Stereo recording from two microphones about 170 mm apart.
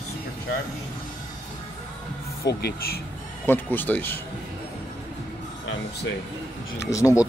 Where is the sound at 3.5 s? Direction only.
10° left (ahead or behind).